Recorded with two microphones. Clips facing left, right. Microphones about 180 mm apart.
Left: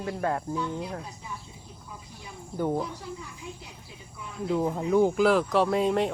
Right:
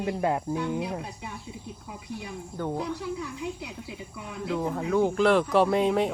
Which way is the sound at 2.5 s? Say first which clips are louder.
Left 4 dB; 10° left (ahead or behind).